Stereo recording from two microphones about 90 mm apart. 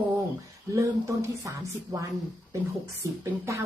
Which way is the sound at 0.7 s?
35° right (ahead or behind).